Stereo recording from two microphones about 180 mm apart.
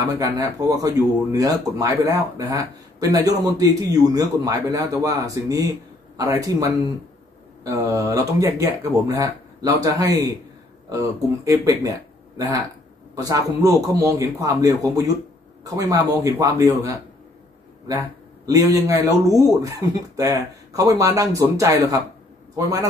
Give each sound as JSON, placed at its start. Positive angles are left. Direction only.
{"t": 0.2, "sound": "speech", "side_deg": -20}